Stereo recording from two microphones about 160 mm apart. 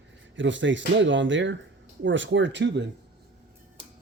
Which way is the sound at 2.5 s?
90° right.